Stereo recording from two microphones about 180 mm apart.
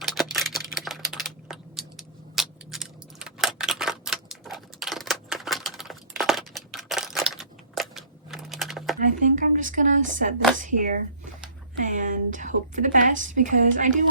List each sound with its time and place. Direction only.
0.0 s typing: centre (ahead or behind)
9.0 s a sound: 45° right (ahead or behind)
10.6 s a woman's voice: 45° right (ahead or behind)